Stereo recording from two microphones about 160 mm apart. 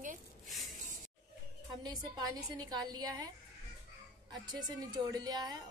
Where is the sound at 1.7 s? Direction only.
25° right (ahead or behind).